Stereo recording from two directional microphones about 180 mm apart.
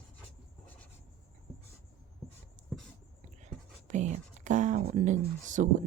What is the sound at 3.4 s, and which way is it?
Whispering, 40° right (ahead or behind).